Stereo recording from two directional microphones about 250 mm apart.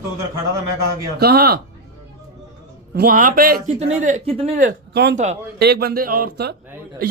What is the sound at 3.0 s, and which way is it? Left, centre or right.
A man's voice, right.